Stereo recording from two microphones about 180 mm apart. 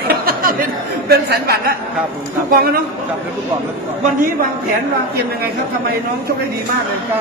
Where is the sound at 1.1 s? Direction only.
60° right (ahead or behind).